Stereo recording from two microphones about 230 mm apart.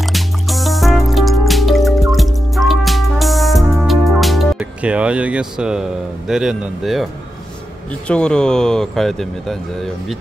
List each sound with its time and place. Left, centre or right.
0.0 s music: centre
8.1 s speech: centre